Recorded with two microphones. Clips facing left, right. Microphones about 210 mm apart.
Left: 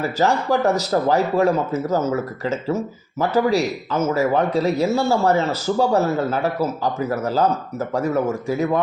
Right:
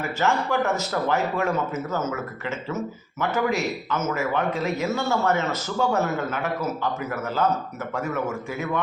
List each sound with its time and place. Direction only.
0.0 s speech: 35° left (ahead or behind)